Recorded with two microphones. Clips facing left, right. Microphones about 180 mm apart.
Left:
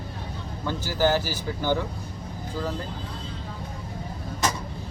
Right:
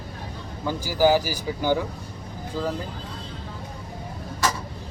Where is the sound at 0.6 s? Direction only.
10° right (ahead or behind).